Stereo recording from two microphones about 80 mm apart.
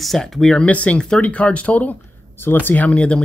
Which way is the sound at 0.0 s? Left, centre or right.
Centre.